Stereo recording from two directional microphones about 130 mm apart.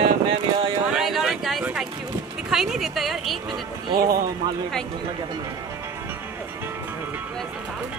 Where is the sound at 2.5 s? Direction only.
5° right (ahead or behind).